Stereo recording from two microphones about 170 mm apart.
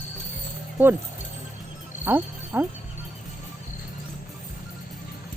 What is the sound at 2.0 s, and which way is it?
Music, 10° right (ahead or behind).